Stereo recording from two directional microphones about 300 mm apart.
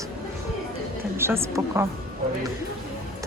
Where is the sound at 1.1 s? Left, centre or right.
Centre.